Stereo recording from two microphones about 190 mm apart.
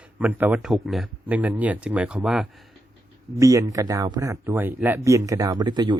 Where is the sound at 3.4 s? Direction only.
15° right (ahead or behind).